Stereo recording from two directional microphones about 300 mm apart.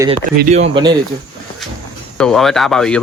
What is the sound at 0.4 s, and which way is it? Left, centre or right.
Speech, right.